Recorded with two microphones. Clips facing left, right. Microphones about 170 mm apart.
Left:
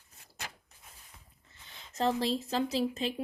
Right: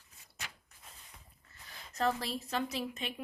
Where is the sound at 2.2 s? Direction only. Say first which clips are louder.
Left 6 dB; 25° left (ahead or behind).